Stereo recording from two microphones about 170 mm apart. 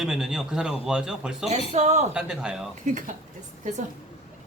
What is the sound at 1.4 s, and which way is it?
Speech, 40° right (ahead or behind).